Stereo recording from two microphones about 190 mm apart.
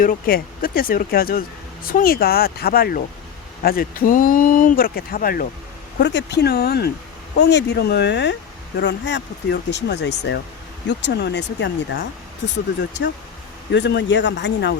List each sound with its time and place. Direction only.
0.0 s speech: 45° left (ahead or behind)
6.0 s speech: 65° left (ahead or behind)
13.7 s speech: 65° left (ahead or behind)